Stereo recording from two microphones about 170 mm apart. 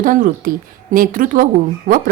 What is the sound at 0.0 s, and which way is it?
A woman's voice, 50° right (ahead or behind).